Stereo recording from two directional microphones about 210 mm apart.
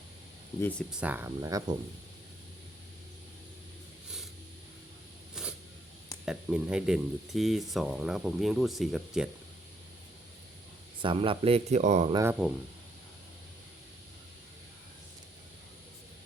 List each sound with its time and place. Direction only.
0.6 s speech: centre (ahead or behind); by 1.6 s 15° right (ahead or behind)
5.3 s a sound: 5° right (ahead or behind)
6.2 s speech: 5° right (ahead or behind)
11.0 s speech: 25° right (ahead or behind)
12.1 s speech: 10° right (ahead or behind)